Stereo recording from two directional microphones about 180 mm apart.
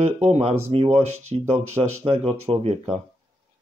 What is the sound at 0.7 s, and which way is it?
Speech, 30° right (ahead or behind).